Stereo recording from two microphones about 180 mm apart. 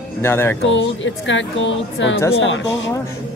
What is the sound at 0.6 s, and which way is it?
Speech, 90° left.